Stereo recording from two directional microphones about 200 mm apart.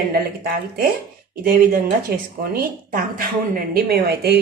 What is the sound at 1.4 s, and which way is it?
A woman's voice, 45° right (ahead or behind).